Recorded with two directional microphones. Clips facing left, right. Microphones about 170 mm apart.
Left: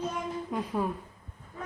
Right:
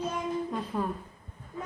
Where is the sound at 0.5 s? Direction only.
10° left (ahead or behind).